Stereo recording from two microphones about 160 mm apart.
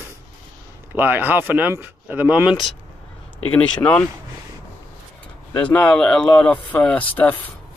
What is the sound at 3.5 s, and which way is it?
Speech, 10° left (ahead or behind).